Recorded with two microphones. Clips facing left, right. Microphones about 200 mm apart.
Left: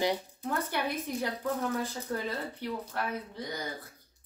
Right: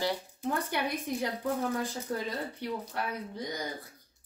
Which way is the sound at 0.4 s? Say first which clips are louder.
Right 1 dB; 15° right (ahead or behind).